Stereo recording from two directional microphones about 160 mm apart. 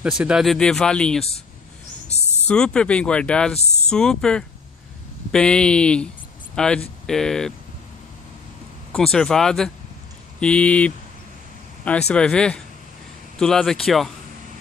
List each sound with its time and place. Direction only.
0.0 s speech: 5° right (ahead or behind)
2.4 s speech: 5° left (ahead or behind)
3.5 s speech: 45° left (ahead or behind)
3.9 s speech: 5° left (ahead or behind)
8.9 s speech: 5° left (ahead or behind)
12.1 s speech: 5° left (ahead or behind)